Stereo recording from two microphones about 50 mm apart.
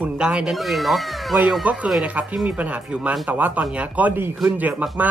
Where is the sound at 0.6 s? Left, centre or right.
Centre.